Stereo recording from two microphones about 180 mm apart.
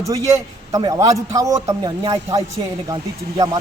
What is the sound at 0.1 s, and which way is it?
A man's voice, 15° right (ahead or behind).